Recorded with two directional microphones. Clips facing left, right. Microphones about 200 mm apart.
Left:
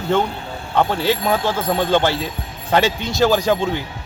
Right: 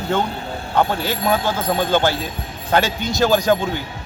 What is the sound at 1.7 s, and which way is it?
Speech, centre (ahead or behind).